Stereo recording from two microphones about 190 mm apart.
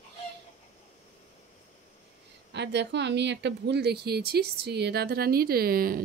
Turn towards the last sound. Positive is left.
turn(degrees=-50)  # may be behind; listen again after turning